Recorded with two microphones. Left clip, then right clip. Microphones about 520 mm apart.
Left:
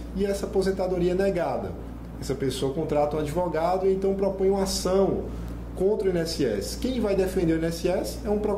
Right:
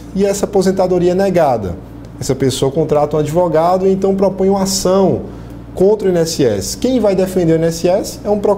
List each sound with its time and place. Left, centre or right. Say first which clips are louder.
0.2 s speech: right 12 dB; right